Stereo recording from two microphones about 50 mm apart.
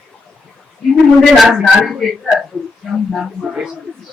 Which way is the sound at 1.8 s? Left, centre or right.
Centre.